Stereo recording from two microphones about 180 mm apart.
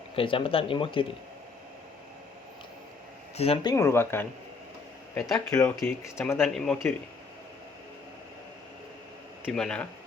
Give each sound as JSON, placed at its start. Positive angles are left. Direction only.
{"t": 0.2, "sound": "speech", "side_deg": 30}
{"t": 3.3, "sound": "speech", "side_deg": 30}
{"t": 5.3, "sound": "speech", "side_deg": 20}
{"t": 6.4, "sound": "speech", "side_deg": 5}
{"t": 9.4, "sound": "speech", "side_deg": 0}